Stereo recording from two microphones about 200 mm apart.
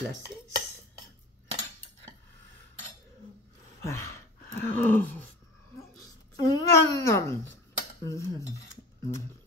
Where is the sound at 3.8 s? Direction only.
15° left (ahead or behind).